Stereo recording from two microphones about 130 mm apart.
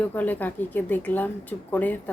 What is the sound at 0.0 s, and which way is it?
A woman's voice, 15° left (ahead or behind).